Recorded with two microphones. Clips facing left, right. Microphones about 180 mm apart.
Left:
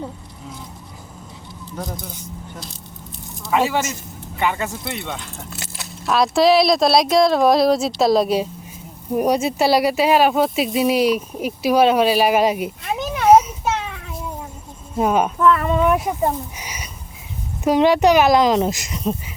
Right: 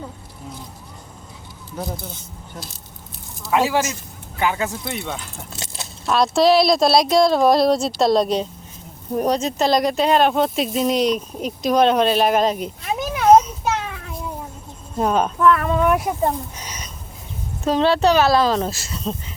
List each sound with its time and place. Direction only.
1.7 s speech: 5° right (ahead or behind)
3.4 s speech: centre (ahead or behind)
5.5 s biting: 25° right (ahead or behind)
6.1 s speech: centre (ahead or behind)
12.8 s a sound: centre (ahead or behind)
13.2 s children playing: 5° left (ahead or behind)
14.9 s speech: 10° left (ahead or behind)